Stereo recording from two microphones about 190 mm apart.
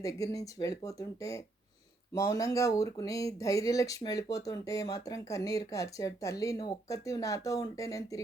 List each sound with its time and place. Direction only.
0.0 s speech: 15° left (ahead or behind)